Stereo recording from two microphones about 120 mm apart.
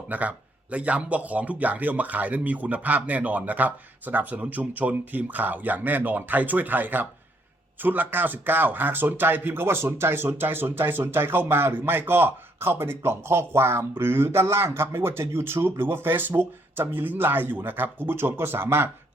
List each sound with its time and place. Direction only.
0.1 s speech: 15° right (ahead or behind)